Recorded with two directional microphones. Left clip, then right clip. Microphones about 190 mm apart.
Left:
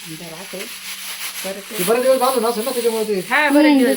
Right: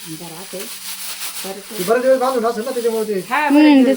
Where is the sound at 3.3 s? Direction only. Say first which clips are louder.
Right 1 dB; 30° right (ahead or behind).